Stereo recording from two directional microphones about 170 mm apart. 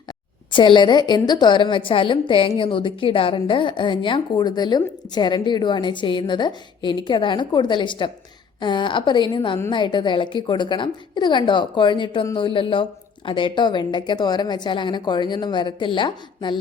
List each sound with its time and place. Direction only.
0.5 s a woman's voice: 30° left (ahead or behind)